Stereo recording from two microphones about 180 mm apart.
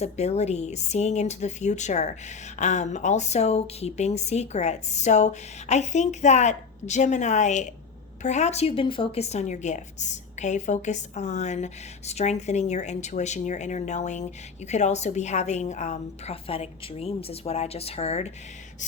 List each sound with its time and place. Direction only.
0.0 s a woman's voice: 35° left (ahead or behind)